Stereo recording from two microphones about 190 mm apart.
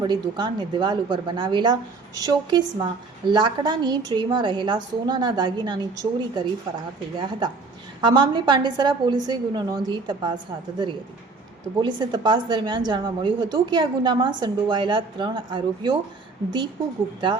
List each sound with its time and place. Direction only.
0.0 s a woman's voice: 20° right (ahead or behind)
11.8 s a woman's voice: 25° right (ahead or behind)